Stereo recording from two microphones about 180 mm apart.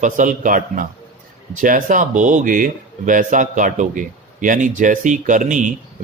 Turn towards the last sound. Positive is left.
turn(degrees=-45)  # may be behind; listen again after turning